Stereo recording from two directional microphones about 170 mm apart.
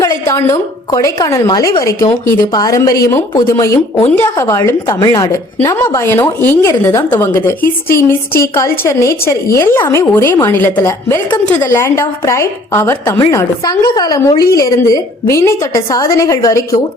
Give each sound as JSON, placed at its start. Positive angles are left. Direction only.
{"t": 0.0, "sound": "a woman's voice", "side_deg": 20}